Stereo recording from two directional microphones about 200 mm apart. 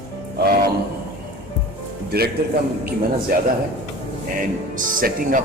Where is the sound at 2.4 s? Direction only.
50° right (ahead or behind).